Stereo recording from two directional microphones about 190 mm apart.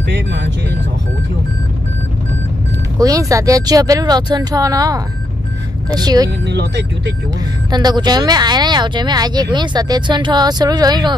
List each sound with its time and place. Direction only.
0.1 s speech: 65° right (ahead or behind)
3.0 s speech: 20° right (ahead or behind)
6.4 s speech: 65° right (ahead or behind)
7.7 s speech: 20° right (ahead or behind)